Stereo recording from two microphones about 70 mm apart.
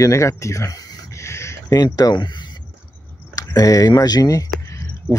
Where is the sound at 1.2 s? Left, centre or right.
Left.